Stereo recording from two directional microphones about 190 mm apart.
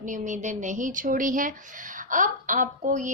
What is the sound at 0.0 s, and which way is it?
A woman's voice, 40° right (ahead or behind).